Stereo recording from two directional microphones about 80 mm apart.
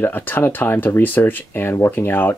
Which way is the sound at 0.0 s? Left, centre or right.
Left.